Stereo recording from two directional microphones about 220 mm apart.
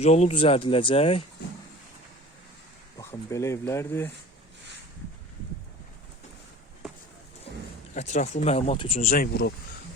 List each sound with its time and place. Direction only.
0.0 s speech: 30° left (ahead or behind)
3.0 s speech: 15° left (ahead or behind)
7.9 s speech: 30° left (ahead or behind)